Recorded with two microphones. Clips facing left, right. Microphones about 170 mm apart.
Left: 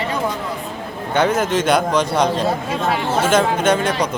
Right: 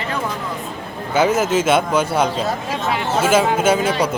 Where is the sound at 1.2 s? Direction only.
5° right (ahead or behind).